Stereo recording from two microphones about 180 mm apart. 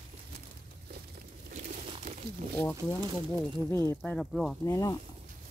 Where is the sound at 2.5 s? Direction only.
10° left (ahead or behind).